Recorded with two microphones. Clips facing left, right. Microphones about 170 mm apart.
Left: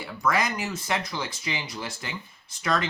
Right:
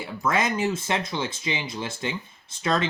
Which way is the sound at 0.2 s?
25° right (ahead or behind).